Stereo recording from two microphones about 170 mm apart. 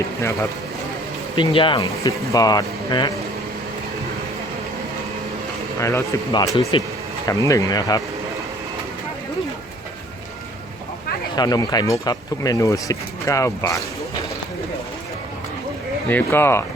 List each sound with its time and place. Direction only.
1.4 s speech: 30° left (ahead or behind)
5.8 s speech: 20° left (ahead or behind)
11.3 s speech: 25° left (ahead or behind)
16.0 s speech: 10° left (ahead or behind)